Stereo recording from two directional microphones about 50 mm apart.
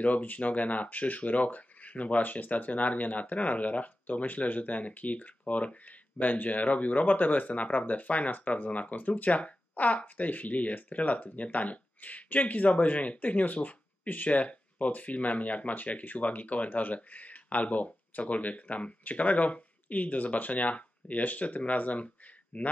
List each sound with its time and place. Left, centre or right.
0.0 s speech: left